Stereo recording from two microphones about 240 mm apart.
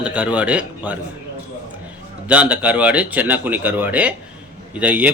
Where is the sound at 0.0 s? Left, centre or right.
Centre.